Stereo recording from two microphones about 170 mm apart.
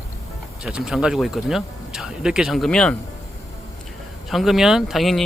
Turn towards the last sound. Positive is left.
turn(degrees=0)  # may be behind; listen again after turning